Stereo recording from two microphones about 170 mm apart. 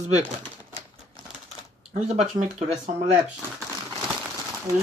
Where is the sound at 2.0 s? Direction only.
40° right (ahead or behind).